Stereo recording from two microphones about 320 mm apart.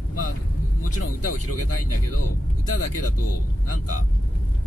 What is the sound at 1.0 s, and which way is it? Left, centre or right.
Speech, left.